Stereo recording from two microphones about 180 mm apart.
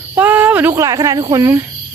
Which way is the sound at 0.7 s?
20° right (ahead or behind).